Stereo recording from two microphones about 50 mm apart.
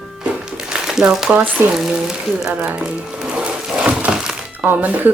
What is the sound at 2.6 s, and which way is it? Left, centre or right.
Music, centre.